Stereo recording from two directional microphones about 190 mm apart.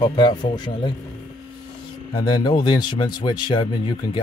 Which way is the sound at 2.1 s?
20° left (ahead or behind).